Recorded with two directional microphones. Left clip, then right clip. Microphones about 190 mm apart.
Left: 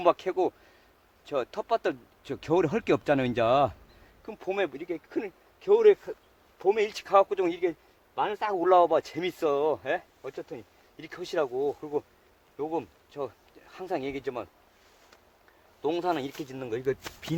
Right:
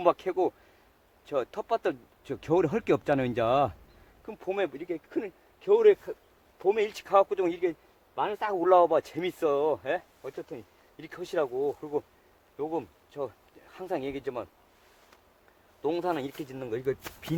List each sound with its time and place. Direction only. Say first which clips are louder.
0.0 s speech: left 1 dB; 15° left (ahead or behind)
15.8 s speech: left 1 dB; 15° left (ahead or behind)